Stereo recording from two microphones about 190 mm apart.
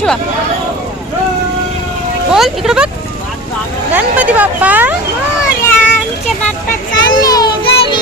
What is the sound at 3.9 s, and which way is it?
Speech, 10° right (ahead or behind).